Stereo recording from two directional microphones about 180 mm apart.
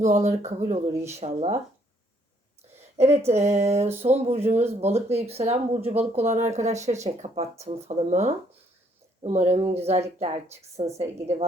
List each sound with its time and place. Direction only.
0.0 s speech: 40° right (ahead or behind)
3.0 s speech: 35° right (ahead or behind)